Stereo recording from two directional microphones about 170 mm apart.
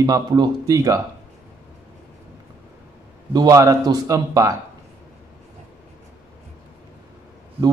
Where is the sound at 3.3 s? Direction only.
20° right (ahead or behind).